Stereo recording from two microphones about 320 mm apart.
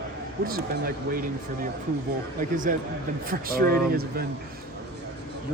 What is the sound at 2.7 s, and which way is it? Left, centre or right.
Speech, right.